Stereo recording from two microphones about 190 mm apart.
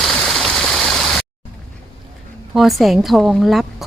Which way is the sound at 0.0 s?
Centre (ahead or behind).